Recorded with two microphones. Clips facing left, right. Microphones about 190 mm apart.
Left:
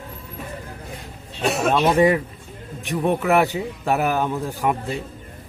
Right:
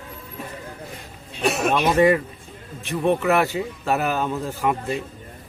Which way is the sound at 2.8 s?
15° left (ahead or behind).